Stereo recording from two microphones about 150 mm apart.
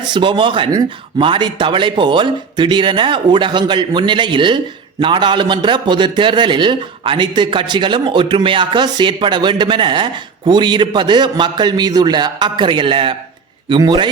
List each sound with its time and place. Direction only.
0.0 s speech: 30° right (ahead or behind)